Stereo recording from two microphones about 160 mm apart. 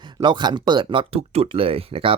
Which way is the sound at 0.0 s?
30° right (ahead or behind).